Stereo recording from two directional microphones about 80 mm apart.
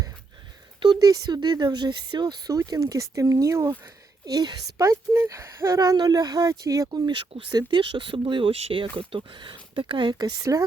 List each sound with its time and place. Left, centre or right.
0.9 s speech: right
3.7 s speech: right
4.8 s speech: right
6.0 s speech: right
7.1 s speech: right